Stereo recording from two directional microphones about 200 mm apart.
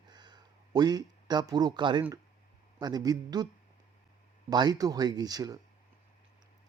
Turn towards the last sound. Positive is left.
turn(degrees=-20)  # may be behind; listen again after turning